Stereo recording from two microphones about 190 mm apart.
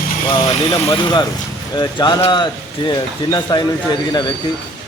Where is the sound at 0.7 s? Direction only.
20° left (ahead or behind).